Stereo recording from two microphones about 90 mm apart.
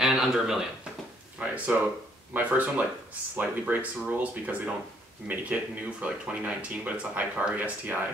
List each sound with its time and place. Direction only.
0.0 s speech: 5° right (ahead or behind)